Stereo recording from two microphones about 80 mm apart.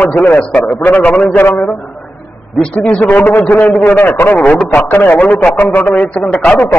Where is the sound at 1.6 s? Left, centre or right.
Centre; by 5.2 s left.